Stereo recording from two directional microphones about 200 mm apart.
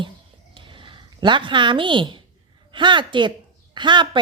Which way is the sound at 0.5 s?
25° right (ahead or behind).